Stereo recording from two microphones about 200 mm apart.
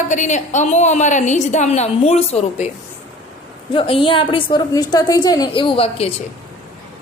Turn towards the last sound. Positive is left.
turn(degrees=30)  # may be behind; listen again after turning